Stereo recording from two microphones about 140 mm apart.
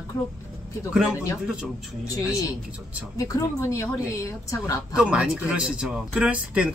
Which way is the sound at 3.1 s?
25° left (ahead or behind).